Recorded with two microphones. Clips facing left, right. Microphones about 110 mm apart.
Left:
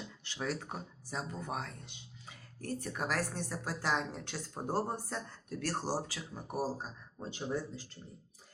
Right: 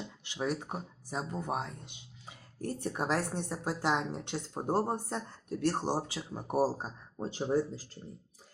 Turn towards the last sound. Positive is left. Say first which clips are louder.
# right 7 dB
turn(degrees=-35)  # may be behind; listen again after turning